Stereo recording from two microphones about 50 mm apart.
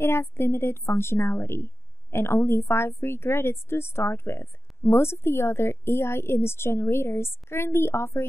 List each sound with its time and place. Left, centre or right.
0.0 s a woman's voice: left